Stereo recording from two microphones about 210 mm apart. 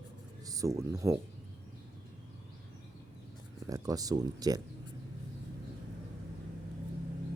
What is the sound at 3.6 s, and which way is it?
Speech, 15° right (ahead or behind).